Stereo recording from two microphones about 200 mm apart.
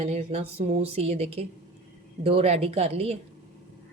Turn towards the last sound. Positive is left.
turn(degrees=-30)  # may be behind; listen again after turning